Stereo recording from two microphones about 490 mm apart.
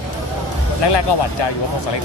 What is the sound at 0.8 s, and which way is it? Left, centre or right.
Speech, left.